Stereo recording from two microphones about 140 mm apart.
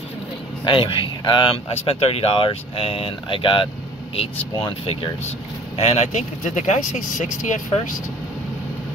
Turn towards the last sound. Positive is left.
turn(degrees=60)  # may be behind; listen again after turning